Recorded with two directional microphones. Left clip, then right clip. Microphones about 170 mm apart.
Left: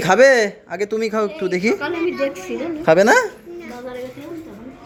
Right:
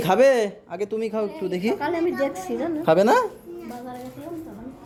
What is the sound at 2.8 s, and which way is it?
Speech, 10° left (ahead or behind).